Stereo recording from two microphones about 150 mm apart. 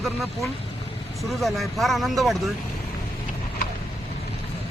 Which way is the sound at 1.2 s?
Centre (ahead or behind).